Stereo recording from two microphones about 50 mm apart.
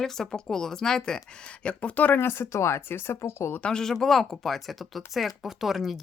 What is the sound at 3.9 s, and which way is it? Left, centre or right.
Speech, centre.